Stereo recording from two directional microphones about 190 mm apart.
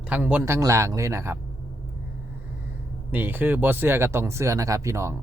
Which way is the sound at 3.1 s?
10° right (ahead or behind).